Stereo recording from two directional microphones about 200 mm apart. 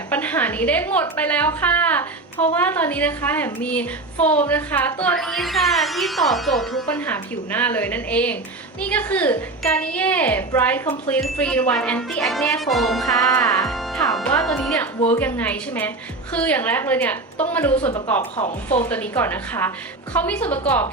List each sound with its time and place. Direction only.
0.1 s a woman's voice: 10° left (ahead or behind)
18.3 s speech: 35° left (ahead or behind)
18.8 s a woman's voice: 10° left (ahead or behind)